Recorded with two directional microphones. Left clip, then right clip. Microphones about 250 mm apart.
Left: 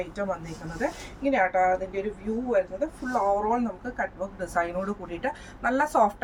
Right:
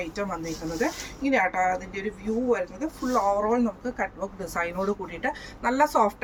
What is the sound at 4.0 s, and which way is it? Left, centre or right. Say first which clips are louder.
A woman's voice: left 2 dB; centre.